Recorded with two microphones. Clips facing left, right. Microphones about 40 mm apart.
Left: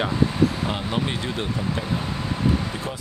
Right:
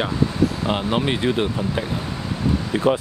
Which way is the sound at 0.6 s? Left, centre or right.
Right.